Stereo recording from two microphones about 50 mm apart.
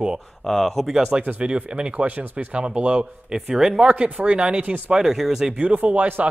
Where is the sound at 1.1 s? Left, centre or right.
Right.